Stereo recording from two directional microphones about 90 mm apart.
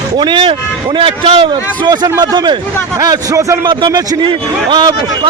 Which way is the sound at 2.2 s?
50° right (ahead or behind).